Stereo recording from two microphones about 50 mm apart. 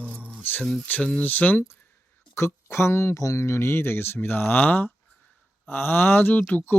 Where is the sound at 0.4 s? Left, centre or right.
Left.